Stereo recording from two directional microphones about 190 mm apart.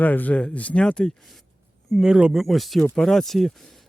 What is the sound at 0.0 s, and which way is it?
Speech, 10° left (ahead or behind).